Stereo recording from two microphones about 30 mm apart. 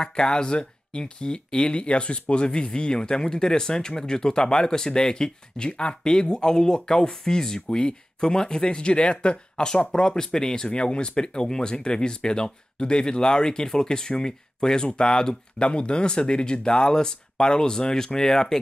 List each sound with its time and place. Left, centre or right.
0.1 s speech: left
1.6 s speech: left; by 18.6 s centre